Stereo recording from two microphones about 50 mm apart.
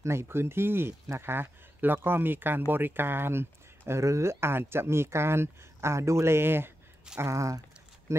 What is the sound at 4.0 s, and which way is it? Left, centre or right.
Speech, right.